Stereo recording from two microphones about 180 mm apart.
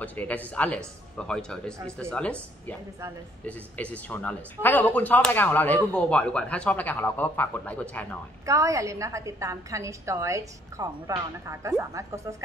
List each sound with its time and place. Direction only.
0.0 s speech: 10° left (ahead or behind)
8.5 s a woman's voice: 20° right (ahead or behind)